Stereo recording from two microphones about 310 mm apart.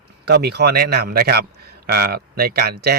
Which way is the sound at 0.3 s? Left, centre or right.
Right.